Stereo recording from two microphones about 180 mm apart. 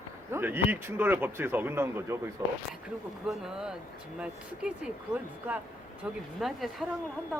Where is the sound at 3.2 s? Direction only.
5° right (ahead or behind).